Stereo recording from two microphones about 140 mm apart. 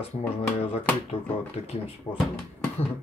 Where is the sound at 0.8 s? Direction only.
10° left (ahead or behind).